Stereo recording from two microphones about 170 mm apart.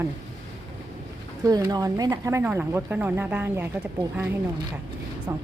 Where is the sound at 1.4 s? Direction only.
20° right (ahead or behind).